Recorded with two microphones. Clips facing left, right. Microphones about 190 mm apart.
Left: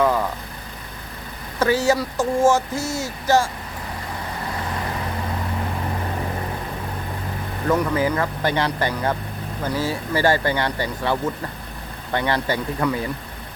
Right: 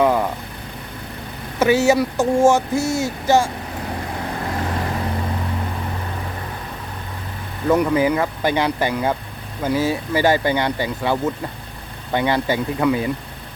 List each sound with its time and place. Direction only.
0.0 s vehicle: 15° right (ahead or behind)
1.5 s speech: 25° right (ahead or behind)
7.7 s speech: 20° right (ahead or behind)